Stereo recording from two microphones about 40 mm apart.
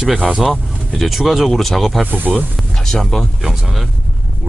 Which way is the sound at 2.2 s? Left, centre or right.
Right.